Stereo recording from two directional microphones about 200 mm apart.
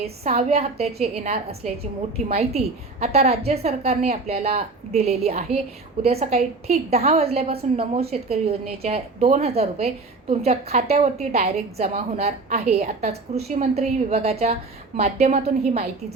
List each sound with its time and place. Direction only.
0.0 s a woman's voice: 30° right (ahead or behind)